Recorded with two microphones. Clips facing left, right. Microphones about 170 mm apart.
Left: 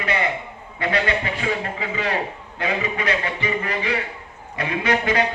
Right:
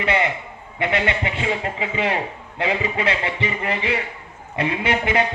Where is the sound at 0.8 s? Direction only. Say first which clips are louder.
Even; 20° right (ahead or behind).